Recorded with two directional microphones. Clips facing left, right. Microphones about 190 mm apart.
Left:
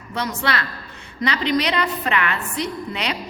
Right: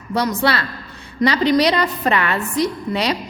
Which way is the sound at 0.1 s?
35° right (ahead or behind).